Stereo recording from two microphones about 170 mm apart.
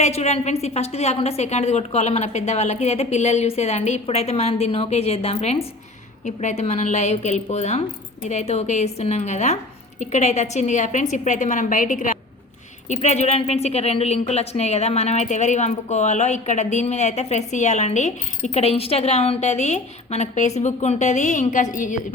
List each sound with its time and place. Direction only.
0.0 s a woman's voice: 40° left (ahead or behind)